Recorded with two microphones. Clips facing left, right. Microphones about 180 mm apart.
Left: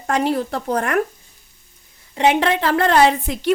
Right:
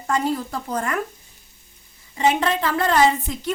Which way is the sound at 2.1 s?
70° left (ahead or behind).